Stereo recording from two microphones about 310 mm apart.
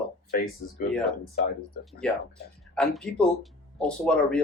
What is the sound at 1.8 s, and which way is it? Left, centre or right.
Speech, centre.